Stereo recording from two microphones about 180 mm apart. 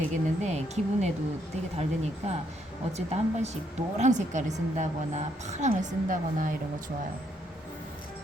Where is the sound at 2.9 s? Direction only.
35° right (ahead or behind).